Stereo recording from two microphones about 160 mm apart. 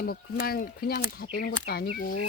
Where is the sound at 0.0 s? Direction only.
70° left (ahead or behind).